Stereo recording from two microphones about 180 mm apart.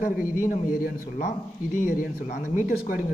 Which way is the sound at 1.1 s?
45° left (ahead or behind).